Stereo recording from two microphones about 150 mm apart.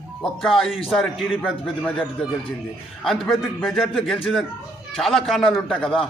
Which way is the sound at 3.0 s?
Centre (ahead or behind).